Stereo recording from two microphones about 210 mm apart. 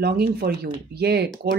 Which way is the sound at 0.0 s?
45° right (ahead or behind).